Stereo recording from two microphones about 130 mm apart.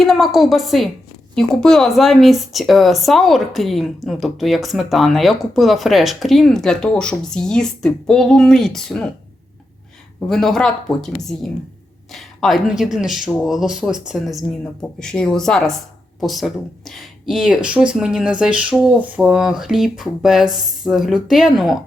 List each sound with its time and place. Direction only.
0.0 s speech: centre (ahead or behind)
10.2 s speech: centre (ahead or behind)